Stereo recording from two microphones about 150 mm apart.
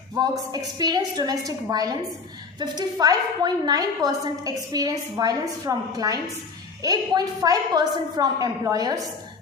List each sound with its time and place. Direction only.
0.2 s a woman's voice: 25° right (ahead or behind)